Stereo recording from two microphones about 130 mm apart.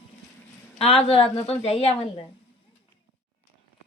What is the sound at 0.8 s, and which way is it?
A woman's voice, 50° left (ahead or behind).